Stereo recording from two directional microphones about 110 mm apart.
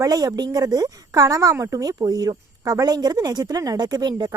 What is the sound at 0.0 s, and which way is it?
A woman's voice, 35° right (ahead or behind).